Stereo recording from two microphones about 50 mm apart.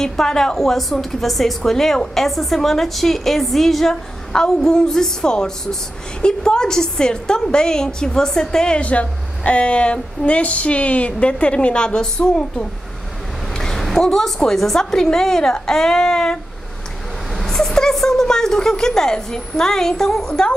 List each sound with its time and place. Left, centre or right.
0.0 s a woman's voice: centre
13.5 s a woman's voice: centre